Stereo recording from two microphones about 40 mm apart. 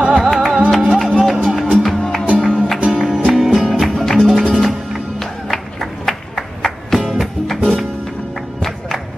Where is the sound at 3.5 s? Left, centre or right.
Centre.